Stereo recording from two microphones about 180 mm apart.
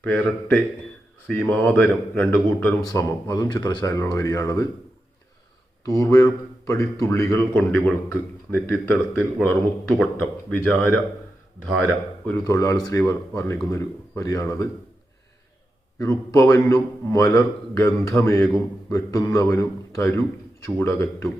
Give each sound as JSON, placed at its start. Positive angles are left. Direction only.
{"t": 0.0, "sound": "a man's voice", "side_deg": 10}
{"t": 5.8, "sound": "a man's voice", "side_deg": 20}
{"t": 12.5, "sound": "a man's voice", "side_deg": 20}
{"t": 16.0, "sound": "a man's voice", "side_deg": 15}